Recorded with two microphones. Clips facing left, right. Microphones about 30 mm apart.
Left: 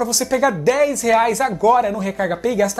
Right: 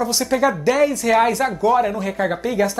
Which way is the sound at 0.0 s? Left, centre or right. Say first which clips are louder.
Left 1 dB; centre.